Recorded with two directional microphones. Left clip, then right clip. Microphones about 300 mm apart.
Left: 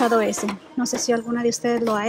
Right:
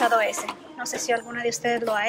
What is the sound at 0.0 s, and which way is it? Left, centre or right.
Speech, centre.